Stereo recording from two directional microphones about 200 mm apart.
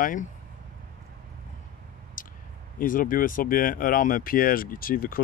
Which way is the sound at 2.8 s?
45° left (ahead or behind).